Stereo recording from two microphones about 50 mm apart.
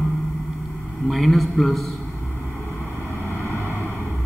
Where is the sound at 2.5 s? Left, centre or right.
Left.